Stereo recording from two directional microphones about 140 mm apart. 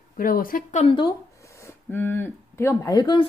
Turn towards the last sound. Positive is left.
turn(degrees=30)  # may be behind; listen again after turning